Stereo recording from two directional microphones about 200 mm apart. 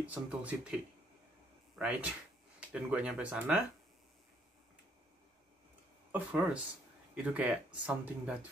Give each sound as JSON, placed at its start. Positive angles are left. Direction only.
{"t": 0.0, "sound": "speech", "side_deg": -5}
{"t": 1.8, "sound": "speech", "side_deg": -5}
{"t": 6.1, "sound": "speech", "side_deg": -5}